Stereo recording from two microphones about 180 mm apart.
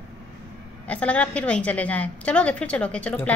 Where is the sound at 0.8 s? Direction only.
5° left (ahead or behind).